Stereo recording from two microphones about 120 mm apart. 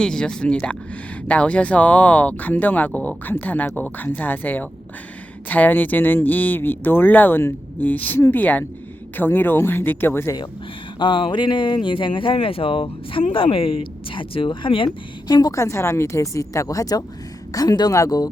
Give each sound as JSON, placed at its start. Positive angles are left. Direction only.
{"t": 0.0, "sound": "speech", "side_deg": 5}
{"t": 11.0, "sound": "speech", "side_deg": 40}
{"t": 15.3, "sound": "a woman's voice", "side_deg": 35}